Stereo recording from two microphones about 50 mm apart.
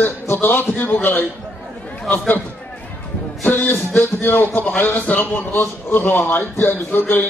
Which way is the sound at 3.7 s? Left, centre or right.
Left.